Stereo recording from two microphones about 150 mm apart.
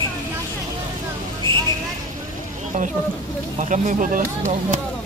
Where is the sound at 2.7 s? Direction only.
60° right (ahead or behind).